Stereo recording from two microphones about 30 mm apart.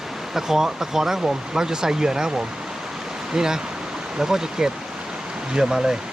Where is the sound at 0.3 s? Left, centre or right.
Centre.